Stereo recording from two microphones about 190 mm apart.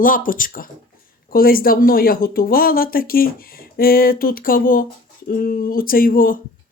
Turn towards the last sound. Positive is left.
turn(degrees=45)  # may be behind; listen again after turning